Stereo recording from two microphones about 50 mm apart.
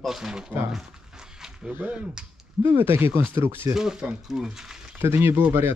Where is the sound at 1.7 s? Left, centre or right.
Right.